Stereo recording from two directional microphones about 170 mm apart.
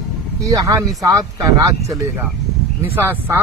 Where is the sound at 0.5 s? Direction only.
20° right (ahead or behind).